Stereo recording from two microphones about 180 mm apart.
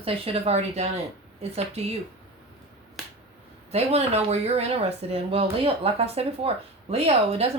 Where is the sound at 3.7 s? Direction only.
35° right (ahead or behind).